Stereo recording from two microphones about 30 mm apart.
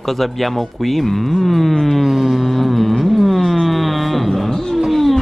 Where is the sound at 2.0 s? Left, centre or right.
Centre.